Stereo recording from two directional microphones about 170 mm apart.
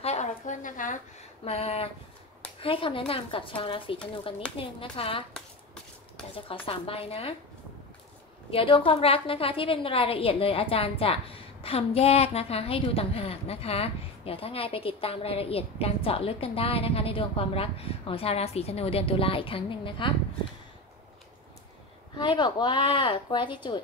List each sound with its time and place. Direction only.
0.0 s a sound: 40° left (ahead or behind)
2.6 s a woman's voice: 30° left (ahead or behind)
6.3 s a woman's voice: 35° left (ahead or behind)
8.5 s a woman's voice: 30° left (ahead or behind)
22.1 s speech: 25° left (ahead or behind)